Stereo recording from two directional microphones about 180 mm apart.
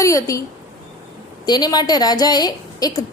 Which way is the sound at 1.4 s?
20° left (ahead or behind).